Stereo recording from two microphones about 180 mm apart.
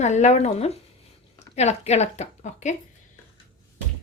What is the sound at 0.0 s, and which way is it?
A woman's voice, 40° left (ahead or behind).